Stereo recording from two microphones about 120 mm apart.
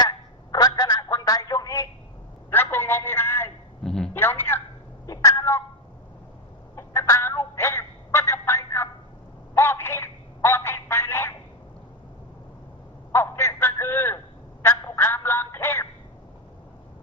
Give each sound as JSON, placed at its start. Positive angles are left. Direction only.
{"t": 0.5, "sound": "telephone", "side_deg": 35}
{"t": 2.7, "sound": "music", "side_deg": 20}
{"t": 3.8, "sound": "a man's voice", "side_deg": 5}
{"t": 4.1, "sound": "speech", "side_deg": 15}
{"t": 5.0, "sound": "a sound", "side_deg": 30}
{"t": 6.7, "sound": "music", "side_deg": 25}
{"t": 9.6, "sound": "telephone", "side_deg": 20}
{"t": 13.1, "sound": "telephone", "side_deg": 20}